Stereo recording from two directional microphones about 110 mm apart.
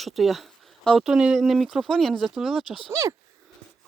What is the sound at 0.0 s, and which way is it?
Speech, centre (ahead or behind).